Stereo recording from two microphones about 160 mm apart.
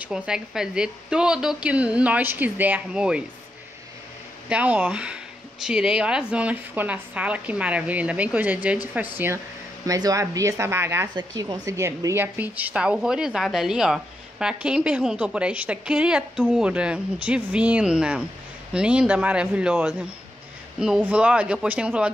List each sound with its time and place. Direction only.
0.0 s a woman's voice: 5° right (ahead or behind)
4.5 s a woman's voice: 5° right (ahead or behind)